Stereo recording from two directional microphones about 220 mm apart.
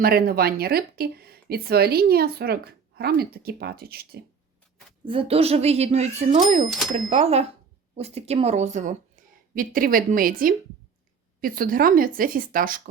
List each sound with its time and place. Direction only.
0.0 s speech: 45° right (ahead or behind)
5.0 s speech: 25° right (ahead or behind)